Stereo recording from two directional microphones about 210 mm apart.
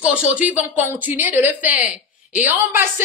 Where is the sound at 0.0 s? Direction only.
5° right (ahead or behind).